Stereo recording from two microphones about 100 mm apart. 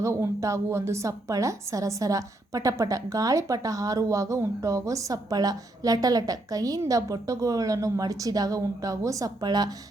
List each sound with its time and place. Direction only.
0.0 s a woman's voice: 30° right (ahead or behind)